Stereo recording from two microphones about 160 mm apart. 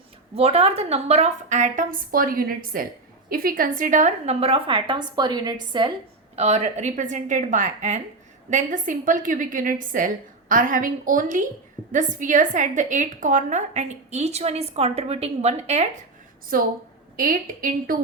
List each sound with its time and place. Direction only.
0.3 s a woman's voice: 40° right (ahead or behind)
16.5 s a woman's voice: 65° right (ahead or behind)